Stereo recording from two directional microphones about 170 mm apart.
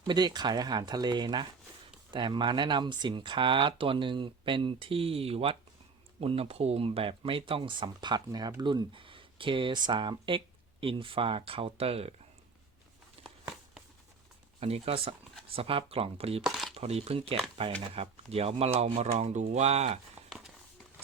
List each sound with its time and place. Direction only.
0.1 s speech: 25° right (ahead or behind)
13.2 s a sound: 35° right (ahead or behind)
14.6 s speech: 35° right (ahead or behind)
16.4 s chopping: centre (ahead or behind)
16.7 s speech: 40° right (ahead or behind)